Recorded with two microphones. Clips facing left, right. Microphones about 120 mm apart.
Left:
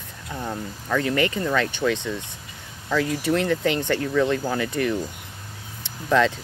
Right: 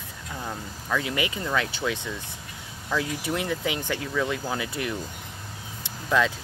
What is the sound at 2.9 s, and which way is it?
Speech, 10° right (ahead or behind).